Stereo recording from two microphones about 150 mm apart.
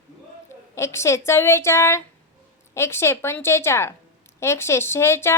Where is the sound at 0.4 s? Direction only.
20° left (ahead or behind).